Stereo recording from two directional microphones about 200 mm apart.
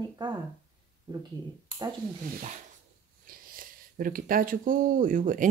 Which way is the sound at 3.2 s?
45° right (ahead or behind).